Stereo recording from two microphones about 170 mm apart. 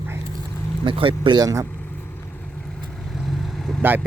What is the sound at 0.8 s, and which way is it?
Speech, 30° right (ahead or behind).